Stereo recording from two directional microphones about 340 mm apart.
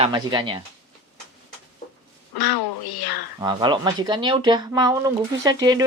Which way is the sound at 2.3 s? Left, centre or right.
Left.